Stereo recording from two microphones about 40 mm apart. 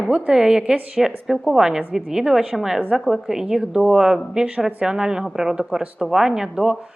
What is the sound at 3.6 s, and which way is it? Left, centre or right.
Speech, right.